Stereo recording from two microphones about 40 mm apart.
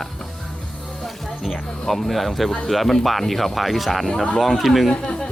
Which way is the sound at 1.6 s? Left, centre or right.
Centre.